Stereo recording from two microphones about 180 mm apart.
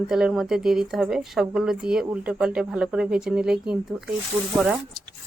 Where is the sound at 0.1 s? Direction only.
5° right (ahead or behind).